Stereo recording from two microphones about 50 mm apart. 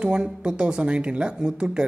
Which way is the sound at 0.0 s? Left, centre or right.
Centre.